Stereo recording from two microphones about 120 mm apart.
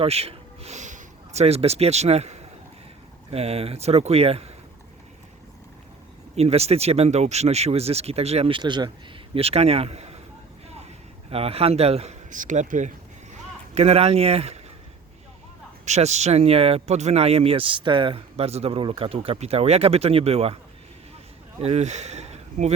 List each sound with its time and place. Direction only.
0.0 s speech: 55° right (ahead or behind)
6.3 s speech: 60° right (ahead or behind); by 8.9 s 40° right (ahead or behind)
9.3 s speech: 55° right (ahead or behind)
11.3 s speech: 55° right (ahead or behind); by 12.9 s 90° right
13.7 s speech: 60° right (ahead or behind)
15.9 s speech: 70° right (ahead or behind)
21.6 s speech: 65° right (ahead or behind)